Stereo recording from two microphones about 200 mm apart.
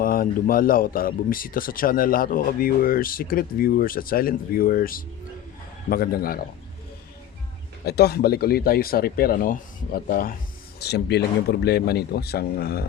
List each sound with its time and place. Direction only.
0.0 s speech: 45° left (ahead or behind)
7.9 s speech: 55° left (ahead or behind)